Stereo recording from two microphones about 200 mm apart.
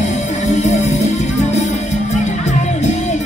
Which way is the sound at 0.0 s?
35° left (ahead or behind).